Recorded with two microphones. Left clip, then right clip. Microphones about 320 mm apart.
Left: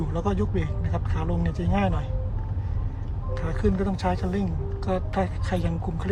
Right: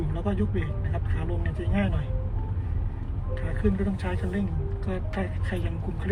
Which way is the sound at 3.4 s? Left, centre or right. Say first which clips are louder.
Left 3 dB; centre.